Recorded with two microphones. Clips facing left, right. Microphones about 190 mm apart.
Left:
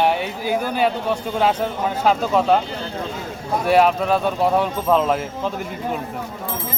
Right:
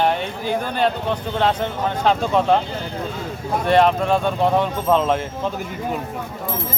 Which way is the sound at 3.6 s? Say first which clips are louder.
Even; 5° left (ahead or behind).